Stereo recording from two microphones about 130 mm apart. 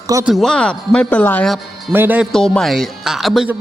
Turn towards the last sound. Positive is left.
turn(degrees=0)  # may be behind; listen again after turning